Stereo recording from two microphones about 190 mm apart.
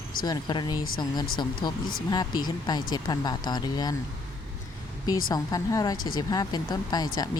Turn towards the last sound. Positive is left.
turn(degrees=20)  # may be behind; listen again after turning